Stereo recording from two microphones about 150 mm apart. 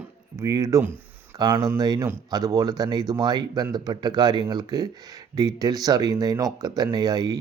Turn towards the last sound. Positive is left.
turn(degrees=-25)  # may be behind; listen again after turning